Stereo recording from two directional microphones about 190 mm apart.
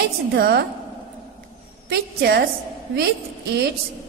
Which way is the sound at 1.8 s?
55° right (ahead or behind).